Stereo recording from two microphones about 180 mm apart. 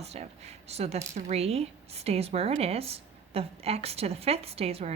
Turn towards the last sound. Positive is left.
turn(degrees=-35)  # may be behind; listen again after turning